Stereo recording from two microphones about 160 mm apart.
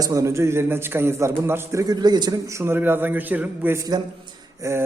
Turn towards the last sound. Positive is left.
turn(degrees=-15)  # may be behind; listen again after turning